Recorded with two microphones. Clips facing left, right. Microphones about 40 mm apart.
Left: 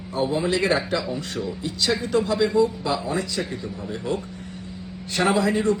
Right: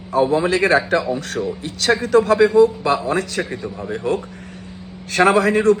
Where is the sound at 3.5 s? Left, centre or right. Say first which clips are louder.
Right 5 dB; right.